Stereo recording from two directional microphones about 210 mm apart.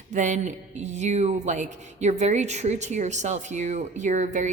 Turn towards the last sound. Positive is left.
turn(degrees=-35)  # may be behind; listen again after turning